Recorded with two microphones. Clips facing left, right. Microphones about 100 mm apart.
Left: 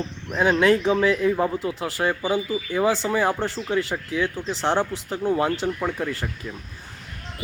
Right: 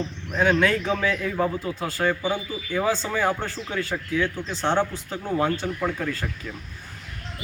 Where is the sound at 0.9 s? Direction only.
20° left (ahead or behind).